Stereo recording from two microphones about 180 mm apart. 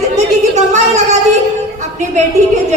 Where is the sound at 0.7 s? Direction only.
40° right (ahead or behind).